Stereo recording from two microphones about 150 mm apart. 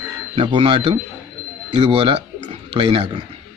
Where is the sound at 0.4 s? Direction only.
35° right (ahead or behind).